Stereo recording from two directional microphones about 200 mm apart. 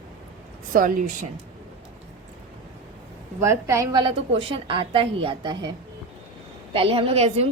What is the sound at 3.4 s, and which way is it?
A woman's voice, 15° right (ahead or behind).